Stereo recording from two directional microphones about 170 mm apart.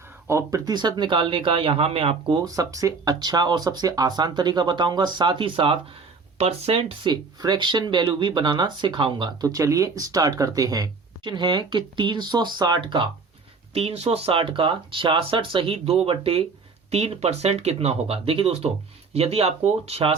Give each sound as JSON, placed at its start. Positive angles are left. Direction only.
{"t": 0.3, "sound": "speech", "side_deg": -20}
{"t": 13.7, "sound": "speech", "side_deg": -35}